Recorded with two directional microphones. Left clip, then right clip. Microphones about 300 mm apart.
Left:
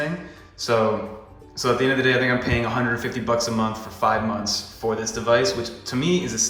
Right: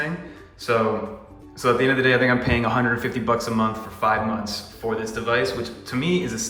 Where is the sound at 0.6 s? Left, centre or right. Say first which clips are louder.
Left 1 dB; centre.